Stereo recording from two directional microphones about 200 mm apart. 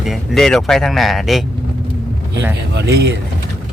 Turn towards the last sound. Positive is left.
turn(degrees=-55)  # may be behind; listen again after turning